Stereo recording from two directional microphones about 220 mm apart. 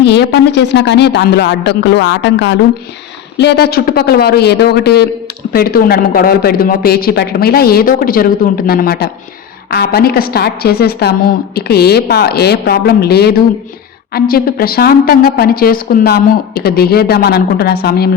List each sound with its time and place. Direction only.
0.0 s a woman's voice: 50° left (ahead or behind)